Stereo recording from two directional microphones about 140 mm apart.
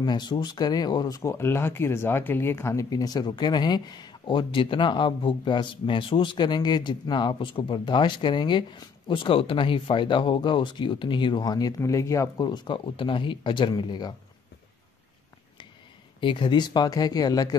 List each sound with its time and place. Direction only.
0.0 s speech: 30° left (ahead or behind)
16.2 s speech: 35° left (ahead or behind)